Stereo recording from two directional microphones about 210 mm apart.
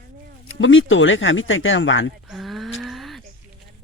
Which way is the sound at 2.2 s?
Centre (ahead or behind).